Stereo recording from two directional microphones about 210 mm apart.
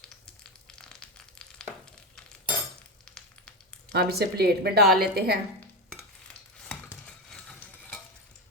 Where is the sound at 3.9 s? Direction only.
50° right (ahead or behind).